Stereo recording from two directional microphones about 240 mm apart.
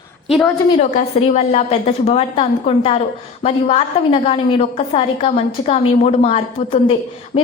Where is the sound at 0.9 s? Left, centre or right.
Left.